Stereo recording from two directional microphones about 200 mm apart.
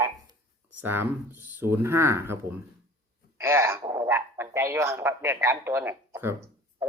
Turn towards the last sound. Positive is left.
turn(degrees=-10)  # may be behind; listen again after turning